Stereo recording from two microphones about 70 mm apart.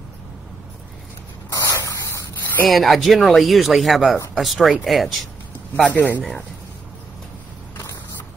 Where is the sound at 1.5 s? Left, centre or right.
Left.